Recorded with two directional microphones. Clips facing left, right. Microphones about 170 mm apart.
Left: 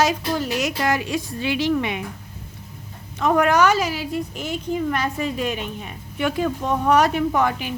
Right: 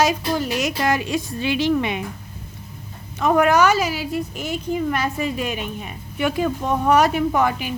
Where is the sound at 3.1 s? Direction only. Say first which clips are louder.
Right 1 dB; 10° right (ahead or behind).